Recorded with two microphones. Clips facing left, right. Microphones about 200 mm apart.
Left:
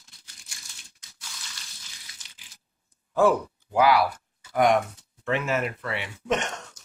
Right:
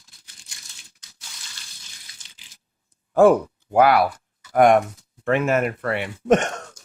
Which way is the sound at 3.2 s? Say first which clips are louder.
Right 6 dB; 50° right (ahead or behind).